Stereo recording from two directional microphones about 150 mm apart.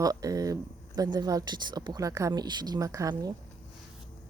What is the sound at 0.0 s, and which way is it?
Speech, 25° right (ahead or behind).